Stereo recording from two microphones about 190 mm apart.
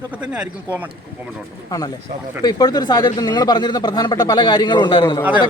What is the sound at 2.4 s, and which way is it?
Speech, 20° left (ahead or behind).